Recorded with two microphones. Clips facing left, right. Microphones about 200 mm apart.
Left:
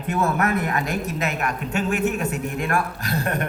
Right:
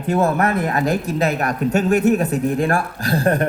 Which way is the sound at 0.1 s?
30° right (ahead or behind).